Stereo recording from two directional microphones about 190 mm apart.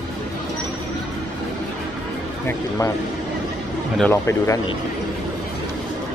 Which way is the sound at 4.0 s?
15° left (ahead or behind).